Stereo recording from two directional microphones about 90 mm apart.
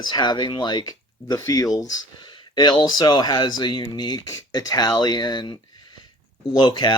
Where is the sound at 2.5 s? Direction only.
55° left (ahead or behind).